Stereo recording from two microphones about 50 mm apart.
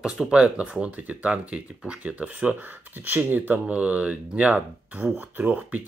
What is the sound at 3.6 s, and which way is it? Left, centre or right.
Speech, right.